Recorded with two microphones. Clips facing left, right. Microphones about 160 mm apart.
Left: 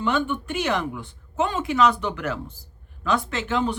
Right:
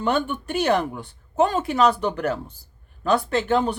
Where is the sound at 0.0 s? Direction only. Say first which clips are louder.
Right 1 dB; 40° right (ahead or behind).